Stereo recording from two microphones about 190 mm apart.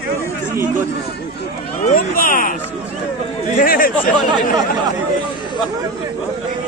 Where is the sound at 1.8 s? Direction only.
45° left (ahead or behind).